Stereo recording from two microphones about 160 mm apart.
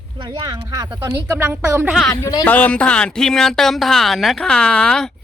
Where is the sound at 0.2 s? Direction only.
30° right (ahead or behind).